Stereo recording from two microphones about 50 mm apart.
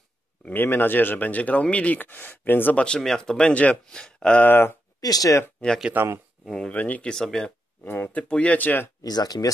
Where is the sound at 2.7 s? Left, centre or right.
Centre.